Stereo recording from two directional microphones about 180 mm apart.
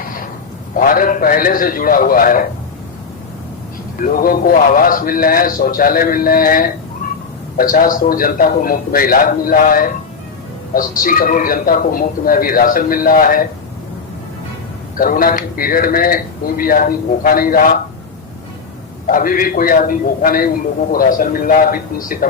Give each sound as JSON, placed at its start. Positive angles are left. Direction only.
{"t": 0.0, "sound": "a sound", "side_deg": 50}
{"t": 0.8, "sound": "speech", "side_deg": 50}
{"t": 3.9, "sound": "speech", "side_deg": 50}
{"t": 14.9, "sound": "speech", "side_deg": 50}
{"t": 19.0, "sound": "speech", "side_deg": 50}